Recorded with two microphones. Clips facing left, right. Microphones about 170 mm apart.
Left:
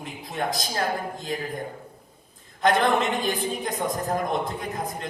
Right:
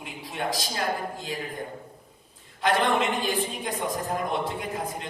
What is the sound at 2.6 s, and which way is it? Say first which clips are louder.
Speech: left 2 dB; 40° left (ahead or behind).